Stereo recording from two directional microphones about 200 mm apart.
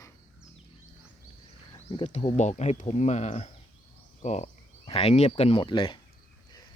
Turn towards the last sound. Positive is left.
turn(degrees=25)  # may be behind; listen again after turning